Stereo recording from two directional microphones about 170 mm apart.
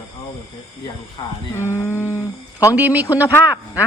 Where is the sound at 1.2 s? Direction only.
25° left (ahead or behind).